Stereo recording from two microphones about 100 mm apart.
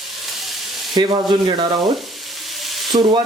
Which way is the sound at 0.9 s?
50° right (ahead or behind).